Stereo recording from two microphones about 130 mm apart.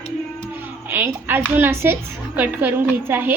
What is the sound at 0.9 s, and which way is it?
A woman's voice, 15° right (ahead or behind).